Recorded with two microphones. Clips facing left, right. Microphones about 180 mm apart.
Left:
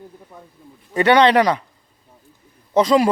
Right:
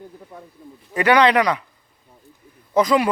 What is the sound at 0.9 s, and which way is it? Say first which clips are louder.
Speech: left 2 dB; 30° left (ahead or behind).